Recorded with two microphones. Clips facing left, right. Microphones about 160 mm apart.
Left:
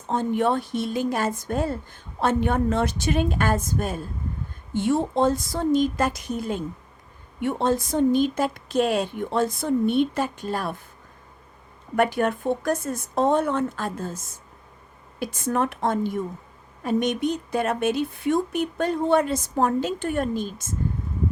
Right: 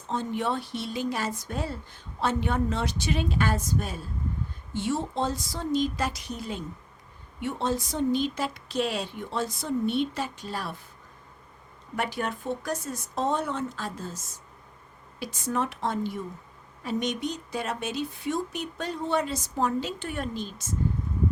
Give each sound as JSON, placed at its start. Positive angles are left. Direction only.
{"t": 0.1, "sound": "speech", "side_deg": 55}
{"t": 11.9, "sound": "speech", "side_deg": 55}